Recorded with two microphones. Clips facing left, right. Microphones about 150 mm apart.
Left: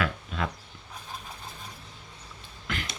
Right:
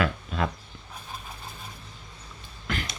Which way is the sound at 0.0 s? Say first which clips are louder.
Right 3 dB; 40° right (ahead or behind).